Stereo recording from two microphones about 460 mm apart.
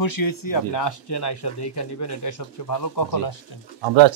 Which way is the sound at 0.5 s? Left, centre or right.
Left.